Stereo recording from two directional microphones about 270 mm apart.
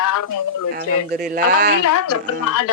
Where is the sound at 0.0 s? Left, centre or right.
Left.